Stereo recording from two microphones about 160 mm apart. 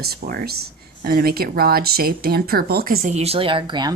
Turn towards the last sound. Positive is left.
turn(degrees=-25)  # may be behind; listen again after turning